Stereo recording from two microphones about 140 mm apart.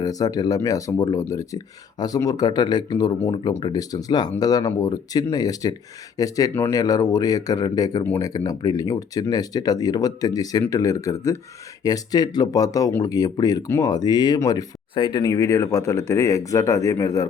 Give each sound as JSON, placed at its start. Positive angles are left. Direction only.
{"t": 0.0, "sound": "speech", "side_deg": 25}